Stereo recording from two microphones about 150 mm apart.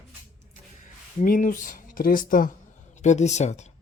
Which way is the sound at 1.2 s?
65° left (ahead or behind).